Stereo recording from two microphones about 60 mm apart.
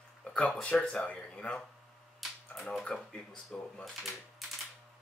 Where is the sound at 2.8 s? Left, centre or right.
Centre.